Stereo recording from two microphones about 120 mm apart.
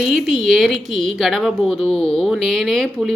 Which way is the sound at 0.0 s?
Centre (ahead or behind).